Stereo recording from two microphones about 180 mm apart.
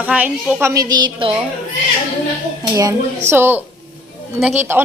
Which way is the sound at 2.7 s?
15° right (ahead or behind).